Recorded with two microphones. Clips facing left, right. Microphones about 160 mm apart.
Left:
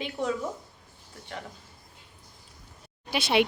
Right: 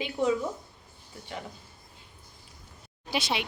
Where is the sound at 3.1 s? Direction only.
60° left (ahead or behind).